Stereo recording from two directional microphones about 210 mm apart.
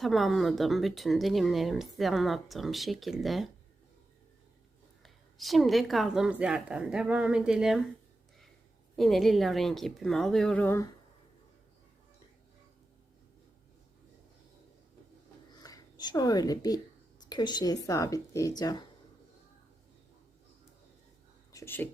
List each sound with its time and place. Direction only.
0.0 s speech: centre (ahead or behind)
5.0 s speech: centre (ahead or behind)
9.0 s speech: centre (ahead or behind)
15.5 s a sound: 20° left (ahead or behind)
17.8 s a woman's voice: 15° left (ahead or behind)
21.5 s speech: 10° left (ahead or behind)